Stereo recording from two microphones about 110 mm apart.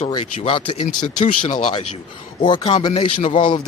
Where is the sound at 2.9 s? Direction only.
60° left (ahead or behind).